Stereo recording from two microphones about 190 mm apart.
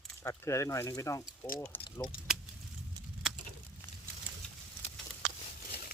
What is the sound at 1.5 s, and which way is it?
Speech, 5° left (ahead or behind).